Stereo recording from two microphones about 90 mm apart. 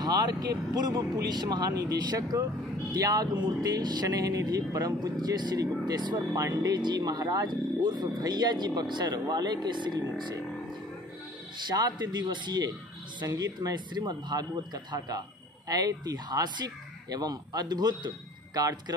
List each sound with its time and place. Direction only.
0.0 s speech: 50° right (ahead or behind)
6.3 s speech: 35° right (ahead or behind)
6.7 s speech: 50° right (ahead or behind)
11.7 s speech: 50° right (ahead or behind)